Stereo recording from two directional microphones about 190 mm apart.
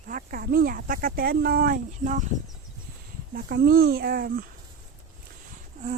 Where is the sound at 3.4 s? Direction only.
55° right (ahead or behind).